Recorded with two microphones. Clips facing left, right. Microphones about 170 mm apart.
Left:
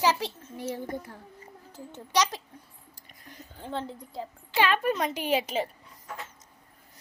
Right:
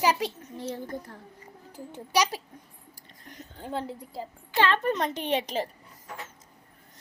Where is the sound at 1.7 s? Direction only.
10° right (ahead or behind).